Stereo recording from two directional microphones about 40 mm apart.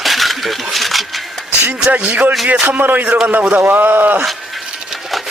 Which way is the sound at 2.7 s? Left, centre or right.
Right.